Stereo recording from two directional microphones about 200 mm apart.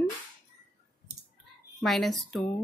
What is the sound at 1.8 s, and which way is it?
Speech, centre (ahead or behind).